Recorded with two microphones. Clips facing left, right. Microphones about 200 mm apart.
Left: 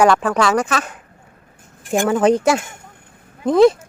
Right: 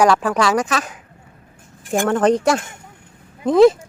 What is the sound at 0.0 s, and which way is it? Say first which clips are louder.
Speech: left 1 dB; centre (ahead or behind).